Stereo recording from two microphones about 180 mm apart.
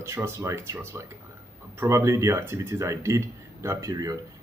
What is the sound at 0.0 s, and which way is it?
Speech, 15° right (ahead or behind).